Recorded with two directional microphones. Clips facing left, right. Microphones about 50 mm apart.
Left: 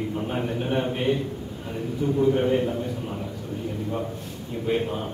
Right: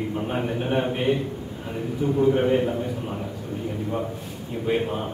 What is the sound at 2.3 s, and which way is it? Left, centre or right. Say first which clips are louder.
Speech: right 2 dB; right.